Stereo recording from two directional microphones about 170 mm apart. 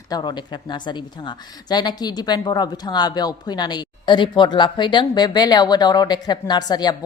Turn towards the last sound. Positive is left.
turn(degrees=25)  # may be behind; listen again after turning